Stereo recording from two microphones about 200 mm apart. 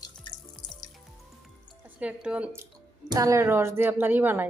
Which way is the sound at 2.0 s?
5° right (ahead or behind).